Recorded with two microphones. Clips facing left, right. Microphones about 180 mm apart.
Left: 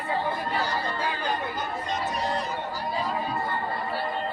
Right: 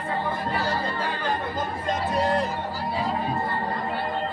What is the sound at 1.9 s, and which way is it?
Music, 55° right (ahead or behind).